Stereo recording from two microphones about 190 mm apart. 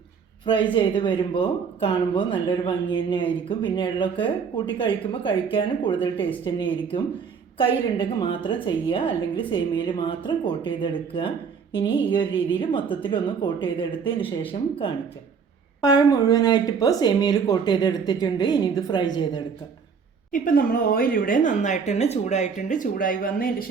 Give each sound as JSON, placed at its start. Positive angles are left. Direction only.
{"t": 0.4, "sound": "speech", "side_deg": 25}
{"t": 15.8, "sound": "speech", "side_deg": 20}
{"t": 20.3, "sound": "a woman's voice", "side_deg": 45}